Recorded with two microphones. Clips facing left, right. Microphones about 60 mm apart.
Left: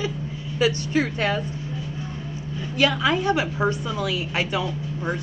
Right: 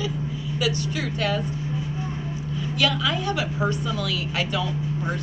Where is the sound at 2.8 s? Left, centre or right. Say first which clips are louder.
Left 4 dB; left.